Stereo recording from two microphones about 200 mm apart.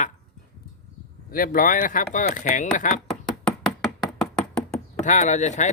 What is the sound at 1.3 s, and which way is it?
Speech, 45° left (ahead or behind).